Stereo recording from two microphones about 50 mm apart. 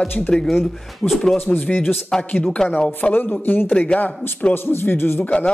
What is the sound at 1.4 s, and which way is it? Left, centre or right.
Speech, left.